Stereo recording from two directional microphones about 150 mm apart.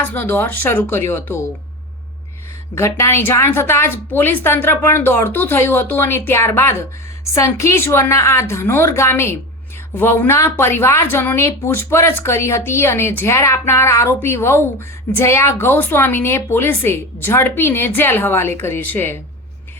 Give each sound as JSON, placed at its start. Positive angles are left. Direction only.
{"t": 0.0, "sound": "speech", "side_deg": 15}
{"t": 2.7, "sound": "speech", "side_deg": 20}